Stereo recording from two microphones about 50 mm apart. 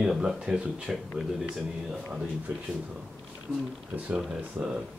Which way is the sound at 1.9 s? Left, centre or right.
Centre.